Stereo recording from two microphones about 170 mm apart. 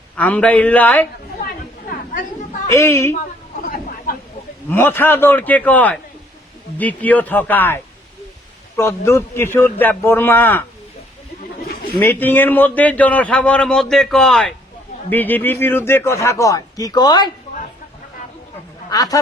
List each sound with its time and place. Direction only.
0.2 s a man's voice: 10° left (ahead or behind)
1.9 s chatter: 50° left (ahead or behind)
2.7 s a man's voice: 15° left (ahead or behind)
3.7 s a sound: 55° left (ahead or behind)
4.7 s a man's voice: 10° left (ahead or behind)
11.9 s a man's voice: 10° left (ahead or behind)
18.9 s speech: 20° left (ahead or behind)